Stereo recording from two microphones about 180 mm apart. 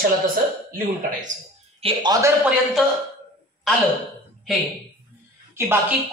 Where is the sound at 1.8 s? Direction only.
30° right (ahead or behind).